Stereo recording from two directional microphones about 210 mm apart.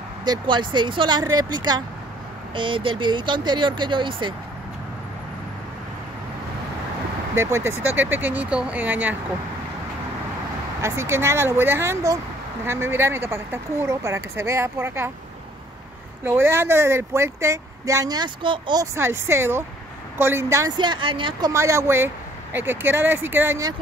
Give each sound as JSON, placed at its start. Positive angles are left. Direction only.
{"t": 0.2, "sound": "speech", "side_deg": -20}
{"t": 7.3, "sound": "speech", "side_deg": -15}
{"t": 10.8, "sound": "speech", "side_deg": -10}
{"t": 16.3, "sound": "speech", "side_deg": -10}